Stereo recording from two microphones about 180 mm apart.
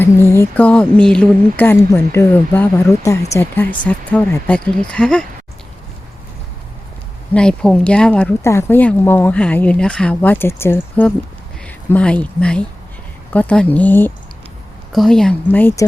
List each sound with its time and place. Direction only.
0.0 s speech: 15° left (ahead or behind)
7.3 s speech: 5° left (ahead or behind)